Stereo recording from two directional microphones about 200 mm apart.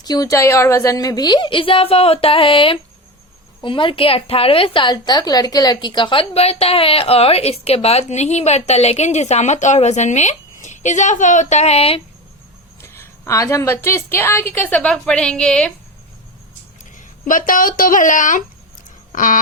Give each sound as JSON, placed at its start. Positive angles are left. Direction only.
{"t": 0.0, "sound": "a woman's voice", "side_deg": 20}
{"t": 12.8, "sound": "a woman's voice", "side_deg": 10}
{"t": 17.0, "sound": "speech", "side_deg": 40}
{"t": 19.1, "sound": "a sound", "side_deg": 40}